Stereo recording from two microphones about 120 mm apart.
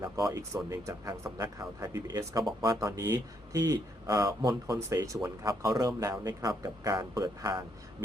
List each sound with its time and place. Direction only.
0.0 s speech: 30° right (ahead or behind)